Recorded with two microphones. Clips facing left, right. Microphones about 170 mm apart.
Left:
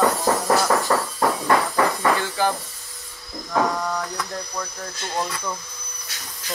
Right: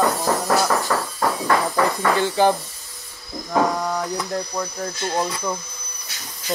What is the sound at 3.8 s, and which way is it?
Speech, 20° right (ahead or behind).